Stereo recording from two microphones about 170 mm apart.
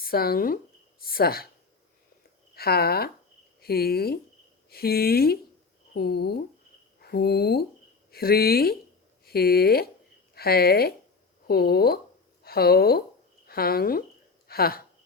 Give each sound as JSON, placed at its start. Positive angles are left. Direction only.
{"t": 0.0, "sound": "speech", "side_deg": 60}
{"t": 2.6, "sound": "a woman's voice", "side_deg": 65}